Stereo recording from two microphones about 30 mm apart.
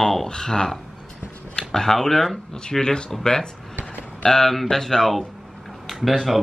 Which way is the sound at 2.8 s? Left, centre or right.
Left.